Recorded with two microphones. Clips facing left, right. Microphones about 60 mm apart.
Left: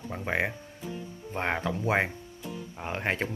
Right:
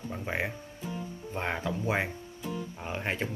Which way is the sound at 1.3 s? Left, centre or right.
Left.